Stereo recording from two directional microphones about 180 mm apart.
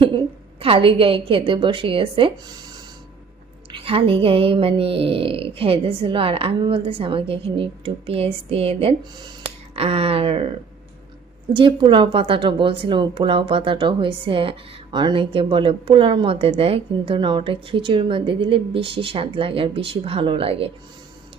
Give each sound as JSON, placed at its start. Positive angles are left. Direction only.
{"t": 0.6, "sound": "a woman's voice", "side_deg": -30}
{"t": 3.7, "sound": "speech", "side_deg": -30}
{"t": 11.5, "sound": "a woman's voice", "side_deg": -30}